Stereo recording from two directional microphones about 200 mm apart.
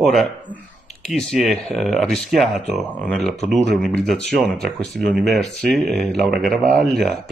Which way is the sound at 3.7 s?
Centre (ahead or behind).